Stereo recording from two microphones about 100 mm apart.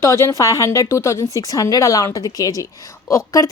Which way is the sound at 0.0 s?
25° left (ahead or behind).